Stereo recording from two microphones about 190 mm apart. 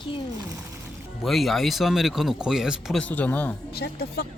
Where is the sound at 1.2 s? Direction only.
Centre (ahead or behind).